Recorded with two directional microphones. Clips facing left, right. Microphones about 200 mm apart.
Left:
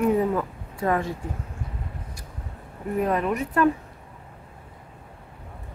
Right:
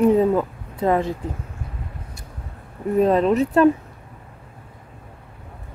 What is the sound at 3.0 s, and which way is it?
Speech, 25° right (ahead or behind).